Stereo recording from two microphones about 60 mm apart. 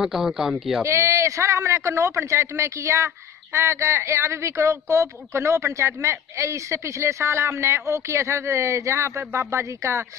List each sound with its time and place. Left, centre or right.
0.0 s speech: centre
0.8 s a man's voice: right
5.3 s a man's voice: right